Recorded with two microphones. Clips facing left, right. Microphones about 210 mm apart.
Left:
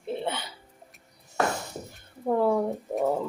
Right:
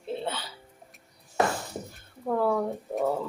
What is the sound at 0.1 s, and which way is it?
Music, 20° left (ahead or behind).